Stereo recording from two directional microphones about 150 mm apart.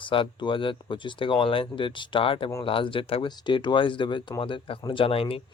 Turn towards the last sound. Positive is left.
turn(degrees=40)  # may be behind; listen again after turning